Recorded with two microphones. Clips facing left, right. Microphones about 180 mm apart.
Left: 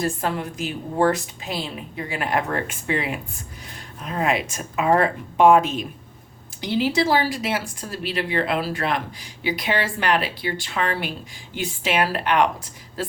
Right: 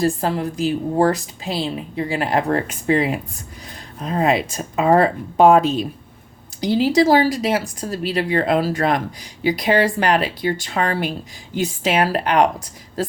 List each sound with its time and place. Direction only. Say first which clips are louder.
0.0 s a woman's voice: right 5 dB; 35° right (ahead or behind)